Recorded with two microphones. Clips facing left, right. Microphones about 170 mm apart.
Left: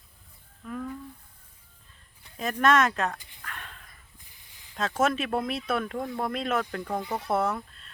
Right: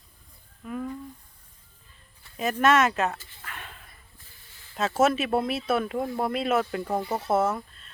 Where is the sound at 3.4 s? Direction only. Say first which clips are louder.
Right 1 dB; 5° right (ahead or behind).